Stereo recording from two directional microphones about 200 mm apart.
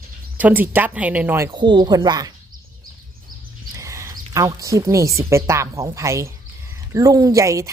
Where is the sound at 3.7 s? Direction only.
15° right (ahead or behind).